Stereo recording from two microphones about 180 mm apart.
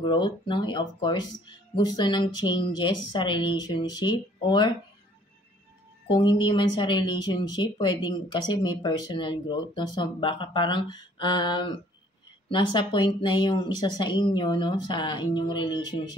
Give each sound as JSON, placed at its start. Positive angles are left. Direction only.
{"t": 0.0, "sound": "speech", "side_deg": 25}
{"t": 6.0, "sound": "speech", "side_deg": 25}